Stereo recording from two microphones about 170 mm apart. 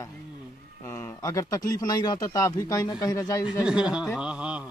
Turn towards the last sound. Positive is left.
turn(degrees=-5)  # may be behind; listen again after turning